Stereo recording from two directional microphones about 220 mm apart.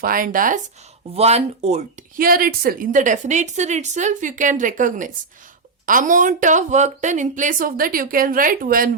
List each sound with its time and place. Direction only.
0.0 s speech: 40° right (ahead or behind)